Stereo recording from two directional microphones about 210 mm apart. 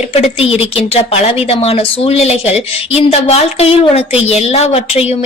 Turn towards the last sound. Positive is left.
turn(degrees=30)  # may be behind; listen again after turning